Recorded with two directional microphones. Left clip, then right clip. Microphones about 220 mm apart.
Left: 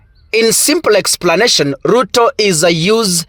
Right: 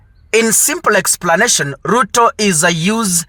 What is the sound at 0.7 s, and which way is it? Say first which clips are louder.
Speech: left 2 dB; 30° left (ahead or behind).